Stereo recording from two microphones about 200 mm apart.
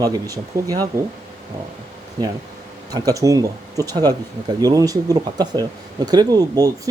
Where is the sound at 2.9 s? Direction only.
15° right (ahead or behind).